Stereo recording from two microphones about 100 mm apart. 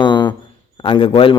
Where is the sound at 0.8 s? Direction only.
65° left (ahead or behind).